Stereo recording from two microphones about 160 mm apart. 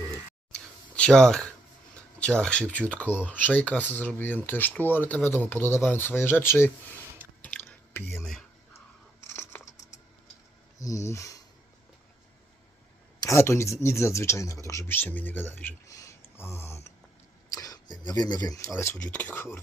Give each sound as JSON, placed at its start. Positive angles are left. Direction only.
{"t": 0.1, "sound": "a sound", "side_deg": 5}
{"t": 2.1, "sound": "speech", "side_deg": 5}
{"t": 7.4, "sound": "drip", "side_deg": 10}
{"t": 8.1, "sound": "speech", "side_deg": 0}
{"t": 9.2, "sound": "computer keyboard", "side_deg": 15}
{"t": 10.8, "sound": "speech", "side_deg": 20}
{"t": 13.2, "sound": "speech", "side_deg": 15}